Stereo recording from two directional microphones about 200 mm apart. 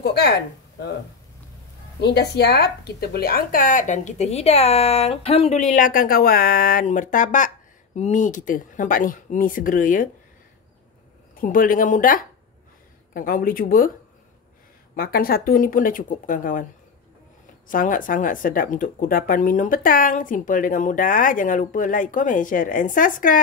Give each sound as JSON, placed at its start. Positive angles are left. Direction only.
{"t": 0.0, "sound": "speech", "side_deg": 55}
{"t": 2.0, "sound": "speech", "side_deg": 55}
{"t": 11.3, "sound": "speech", "side_deg": 45}
{"t": 15.0, "sound": "speech", "side_deg": 50}
{"t": 17.6, "sound": "speech", "side_deg": 40}